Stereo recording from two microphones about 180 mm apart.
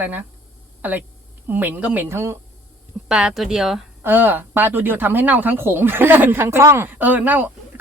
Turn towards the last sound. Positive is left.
turn(degrees=-10)  # may be behind; listen again after turning